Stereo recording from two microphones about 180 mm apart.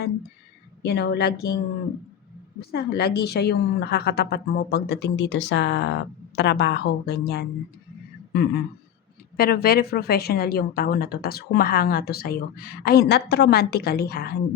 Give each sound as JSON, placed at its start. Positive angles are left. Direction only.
{"t": 0.8, "sound": "a woman's voice", "side_deg": 70}
{"t": 2.6, "sound": "a woman's voice", "side_deg": 65}
{"t": 9.4, "sound": "a woman's voice", "side_deg": 60}